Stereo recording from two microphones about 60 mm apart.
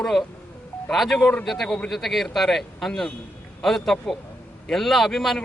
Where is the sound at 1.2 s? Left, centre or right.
Left.